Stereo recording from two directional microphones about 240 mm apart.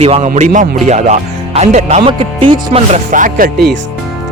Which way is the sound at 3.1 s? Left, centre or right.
Right.